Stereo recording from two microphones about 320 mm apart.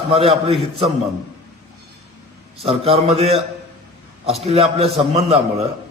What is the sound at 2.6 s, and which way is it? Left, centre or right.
Speech, centre.